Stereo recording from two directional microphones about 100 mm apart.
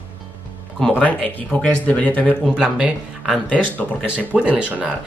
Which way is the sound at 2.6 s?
5° right (ahead or behind).